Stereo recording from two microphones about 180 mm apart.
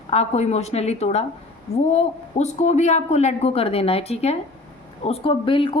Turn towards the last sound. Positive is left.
turn(degrees=30)  # may be behind; listen again after turning